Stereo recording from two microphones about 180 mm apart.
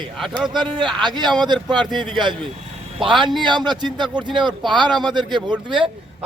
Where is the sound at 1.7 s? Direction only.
5° left (ahead or behind).